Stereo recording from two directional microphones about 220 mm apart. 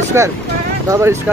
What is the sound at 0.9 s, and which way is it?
Speech, 10° right (ahead or behind).